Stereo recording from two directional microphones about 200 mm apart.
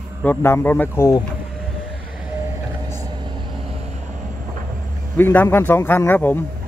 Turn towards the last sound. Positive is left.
turn(degrees=10)  # may be behind; listen again after turning